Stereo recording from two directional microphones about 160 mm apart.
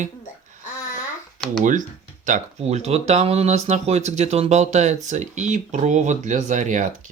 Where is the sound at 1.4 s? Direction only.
55° right (ahead or behind).